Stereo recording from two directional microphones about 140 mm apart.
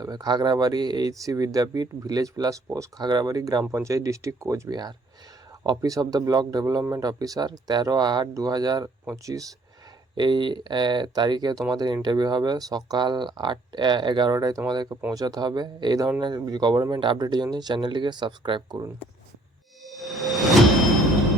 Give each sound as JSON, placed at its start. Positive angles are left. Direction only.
{"t": 0.0, "sound": "speech", "side_deg": -30}
{"t": 19.8, "sound": "music", "side_deg": 0}